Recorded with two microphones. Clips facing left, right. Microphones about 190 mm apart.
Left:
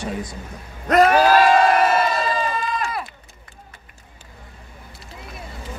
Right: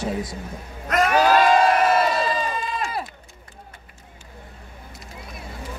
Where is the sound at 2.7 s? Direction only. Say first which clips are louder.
Left 1 dB; 30° right (ahead or behind).